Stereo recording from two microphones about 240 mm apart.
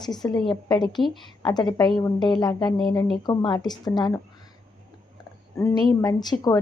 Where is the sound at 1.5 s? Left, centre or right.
Centre.